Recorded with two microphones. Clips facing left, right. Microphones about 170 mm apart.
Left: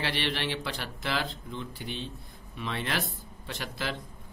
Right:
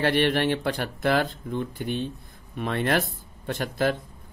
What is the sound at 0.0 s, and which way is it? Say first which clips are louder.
Speech: right 10 dB; 50° right (ahead or behind).